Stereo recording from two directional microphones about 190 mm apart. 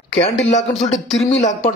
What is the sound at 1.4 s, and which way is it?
Speech, 40° left (ahead or behind).